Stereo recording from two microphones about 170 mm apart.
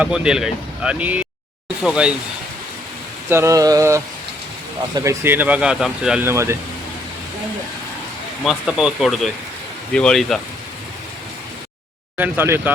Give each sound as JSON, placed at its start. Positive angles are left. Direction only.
{"t": 0.0, "sound": "speech", "side_deg": -5}
{"t": 3.2, "sound": "speech", "side_deg": -15}
{"t": 8.4, "sound": "speech", "side_deg": 0}
{"t": 12.1, "sound": "speech", "side_deg": -10}